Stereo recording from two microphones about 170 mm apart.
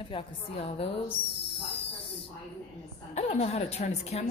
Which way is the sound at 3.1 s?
40° left (ahead or behind).